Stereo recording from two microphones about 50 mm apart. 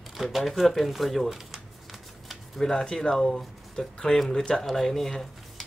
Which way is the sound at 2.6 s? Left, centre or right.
Centre.